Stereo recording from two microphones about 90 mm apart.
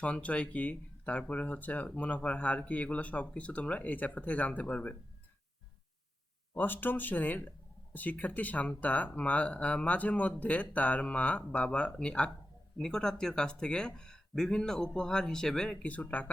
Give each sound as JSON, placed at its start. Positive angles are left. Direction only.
{"t": 0.0, "sound": "speech", "side_deg": 15}
{"t": 6.5, "sound": "speech", "side_deg": 20}